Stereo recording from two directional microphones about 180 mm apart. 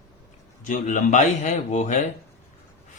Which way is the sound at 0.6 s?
45° left (ahead or behind).